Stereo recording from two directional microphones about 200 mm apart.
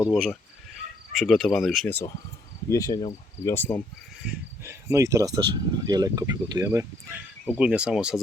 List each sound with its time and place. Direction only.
0.0 s speech: centre (ahead or behind)
4.6 s speech: 15° right (ahead or behind)